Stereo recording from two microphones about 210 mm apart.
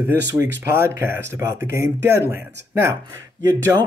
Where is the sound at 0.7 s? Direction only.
10° right (ahead or behind).